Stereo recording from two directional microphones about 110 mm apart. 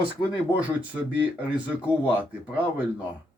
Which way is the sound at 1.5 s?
10° right (ahead or behind).